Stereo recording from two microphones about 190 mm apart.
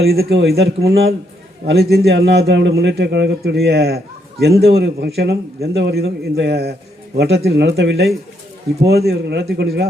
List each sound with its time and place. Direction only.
0.1 s a man's voice: 60° right (ahead or behind)